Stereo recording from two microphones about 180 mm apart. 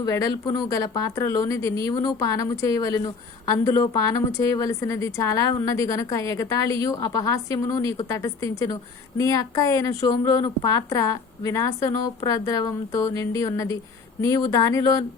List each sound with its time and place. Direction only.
0.0 s a woman's voice: 20° left (ahead or behind)